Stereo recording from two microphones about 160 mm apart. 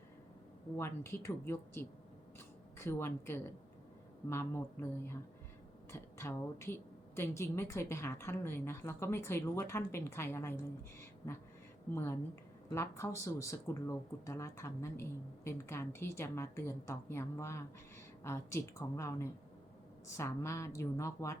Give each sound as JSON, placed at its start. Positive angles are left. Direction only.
{"t": 0.8, "sound": "a woman's voice", "side_deg": 15}
{"t": 11.9, "sound": "a woman's voice", "side_deg": 15}